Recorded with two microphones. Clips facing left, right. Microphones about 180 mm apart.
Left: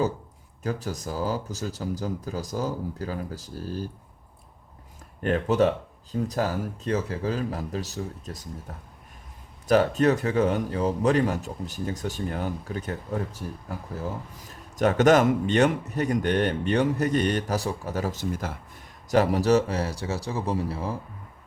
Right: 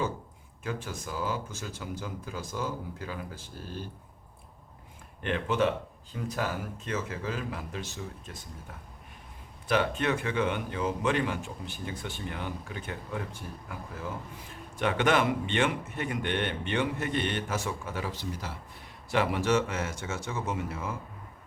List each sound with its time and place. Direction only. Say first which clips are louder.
0.6 s speech: left 6 dB; 40° left (ahead or behind)
5.2 s speech: left 6 dB; 40° left (ahead or behind)